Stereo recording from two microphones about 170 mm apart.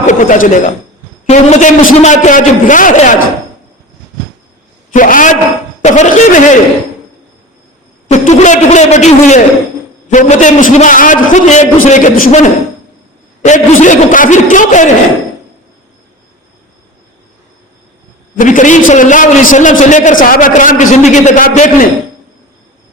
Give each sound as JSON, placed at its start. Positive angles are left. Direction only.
{"t": 0.0, "sound": "a man's voice", "side_deg": 45}
{"t": 4.9, "sound": "a man's voice", "side_deg": 50}
{"t": 8.0, "sound": "a man's voice", "side_deg": 45}
{"t": 18.3, "sound": "a man's voice", "side_deg": 50}